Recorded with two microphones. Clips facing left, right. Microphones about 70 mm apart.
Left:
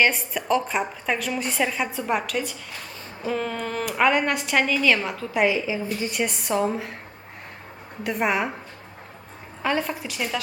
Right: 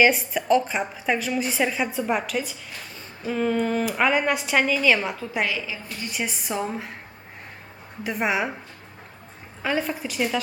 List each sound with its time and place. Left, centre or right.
0.0 s a woman's voice: centre
5.5 s a woman's voice: left
6.1 s a woman's voice: centre
8.0 s a woman's voice: centre
9.6 s a woman's voice: centre